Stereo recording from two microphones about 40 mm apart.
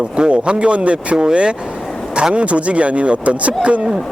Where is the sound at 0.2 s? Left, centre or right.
Right.